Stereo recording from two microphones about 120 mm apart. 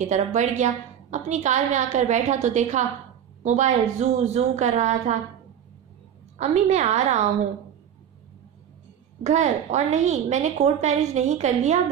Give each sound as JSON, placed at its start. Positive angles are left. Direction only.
{"t": 0.0, "sound": "a woman's voice", "side_deg": -85}
{"t": 6.3, "sound": "a woman's voice", "side_deg": -65}
{"t": 9.2, "sound": "a woman's voice", "side_deg": -75}